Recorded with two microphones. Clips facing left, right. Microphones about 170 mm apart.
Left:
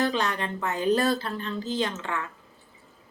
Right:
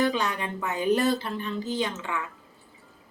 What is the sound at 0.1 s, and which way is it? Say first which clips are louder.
Speech: left 1 dB; 10° right (ahead or behind).